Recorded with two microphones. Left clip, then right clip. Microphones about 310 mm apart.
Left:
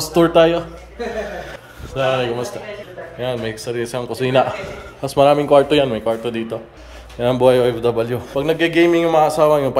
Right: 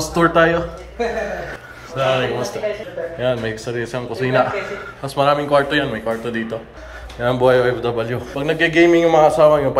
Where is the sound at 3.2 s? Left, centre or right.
Centre; by 6.1 s left.